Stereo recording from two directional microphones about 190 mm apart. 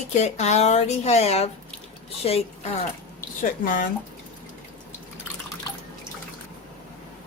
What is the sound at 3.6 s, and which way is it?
Speech, 45° left (ahead or behind).